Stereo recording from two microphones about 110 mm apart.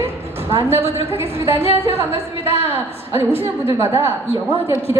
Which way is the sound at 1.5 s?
60° left (ahead or behind).